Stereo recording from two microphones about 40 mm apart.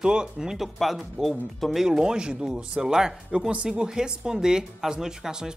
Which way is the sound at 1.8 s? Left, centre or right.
Centre.